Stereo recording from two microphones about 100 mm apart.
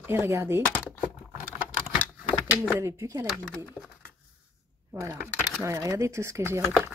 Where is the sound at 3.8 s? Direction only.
20° left (ahead or behind).